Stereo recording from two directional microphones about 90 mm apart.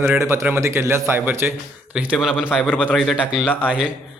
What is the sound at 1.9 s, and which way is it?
Speech, 10° right (ahead or behind).